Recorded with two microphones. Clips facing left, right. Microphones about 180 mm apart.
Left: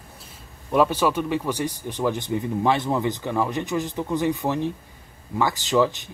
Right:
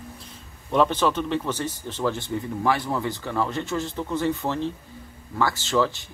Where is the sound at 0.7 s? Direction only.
10° left (ahead or behind).